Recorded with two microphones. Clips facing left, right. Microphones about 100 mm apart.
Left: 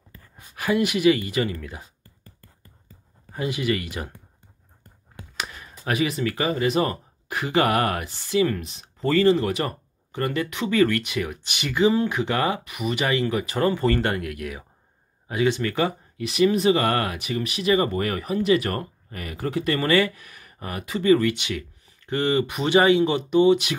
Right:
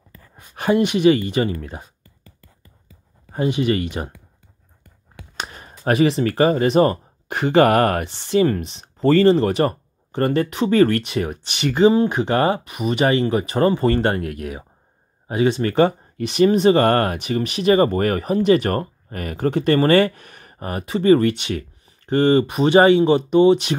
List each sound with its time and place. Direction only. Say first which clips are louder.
0.6 s speech: right 5 dB; 30° right (ahead or behind)
3.3 s speech: right 6 dB; 30° right (ahead or behind)
5.4 s speech: right 5 dB; 35° right (ahead or behind)
8.2 s speech: right 4 dB; 35° right (ahead or behind)
22.4 s speech: right 5 dB; 25° right (ahead or behind)